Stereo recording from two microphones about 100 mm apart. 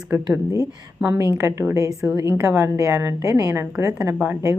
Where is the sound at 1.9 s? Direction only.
5° right (ahead or behind).